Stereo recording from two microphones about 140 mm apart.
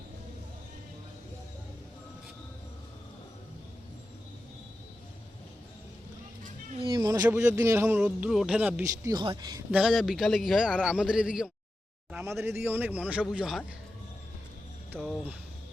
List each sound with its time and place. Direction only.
6.9 s a sound: 25° right (ahead or behind)
7.3 s a man's voice: 20° right (ahead or behind)
9.0 s speech: 35° right (ahead or behind)
9.7 s a man's voice: centre (ahead or behind)
12.1 s a man's voice: 20° right (ahead or behind); by 13.6 s 5° right (ahead or behind)
14.9 s speech: 5° left (ahead or behind)